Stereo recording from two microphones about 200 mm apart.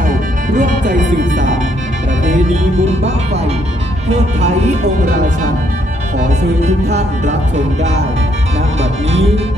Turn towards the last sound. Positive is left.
turn(degrees=-35)  # may be behind; listen again after turning